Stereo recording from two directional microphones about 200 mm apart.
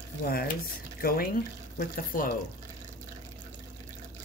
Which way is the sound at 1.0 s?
45° left (ahead or behind).